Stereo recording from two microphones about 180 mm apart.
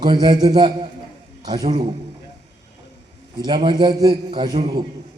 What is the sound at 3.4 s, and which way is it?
A man's voice, 25° right (ahead or behind).